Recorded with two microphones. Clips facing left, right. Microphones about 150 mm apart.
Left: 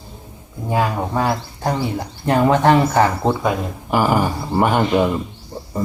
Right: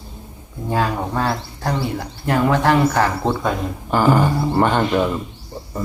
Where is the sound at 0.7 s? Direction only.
15° left (ahead or behind).